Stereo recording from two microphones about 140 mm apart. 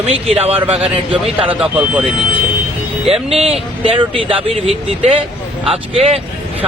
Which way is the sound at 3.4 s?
40° right (ahead or behind).